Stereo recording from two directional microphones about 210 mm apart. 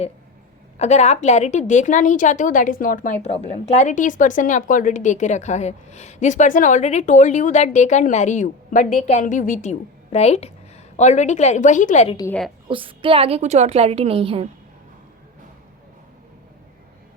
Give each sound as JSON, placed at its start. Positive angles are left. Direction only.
{"t": 0.8, "sound": "a woman's voice", "side_deg": 30}
{"t": 12.1, "sound": "a woman's voice", "side_deg": 15}
{"t": 12.6, "sound": "a woman's voice", "side_deg": -25}